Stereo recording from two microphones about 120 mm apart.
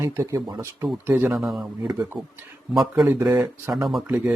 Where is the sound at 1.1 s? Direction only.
20° right (ahead or behind).